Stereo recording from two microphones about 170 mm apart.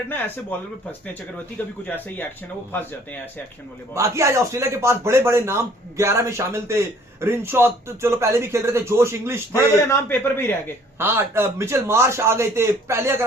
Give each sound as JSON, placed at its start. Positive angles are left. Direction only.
{"t": 2.7, "sound": "a man's voice", "side_deg": 10}
{"t": 3.9, "sound": "a man's voice", "side_deg": -15}
{"t": 9.8, "sound": "a man's voice", "side_deg": 15}
{"t": 10.9, "sound": "a man's voice", "side_deg": -15}